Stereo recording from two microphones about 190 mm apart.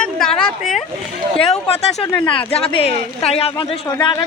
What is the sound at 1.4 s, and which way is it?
Speech, 30° left (ahead or behind).